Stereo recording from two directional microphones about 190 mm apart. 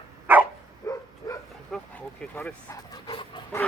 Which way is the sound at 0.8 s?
15° left (ahead or behind).